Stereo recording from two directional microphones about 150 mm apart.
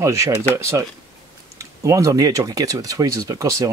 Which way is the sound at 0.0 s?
20° right (ahead or behind).